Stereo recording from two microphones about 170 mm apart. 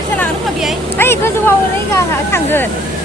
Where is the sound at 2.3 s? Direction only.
10° left (ahead or behind).